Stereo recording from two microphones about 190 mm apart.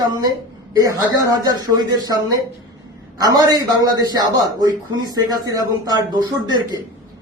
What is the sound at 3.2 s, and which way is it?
A man's voice, 20° right (ahead or behind).